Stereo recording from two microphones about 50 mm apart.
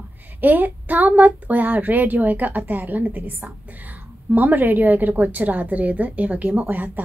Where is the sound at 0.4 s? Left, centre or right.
Right.